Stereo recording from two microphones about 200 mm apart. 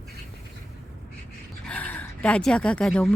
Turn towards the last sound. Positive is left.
turn(degrees=5)  # may be behind; listen again after turning